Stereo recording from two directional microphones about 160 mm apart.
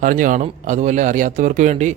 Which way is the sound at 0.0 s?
55° right (ahead or behind).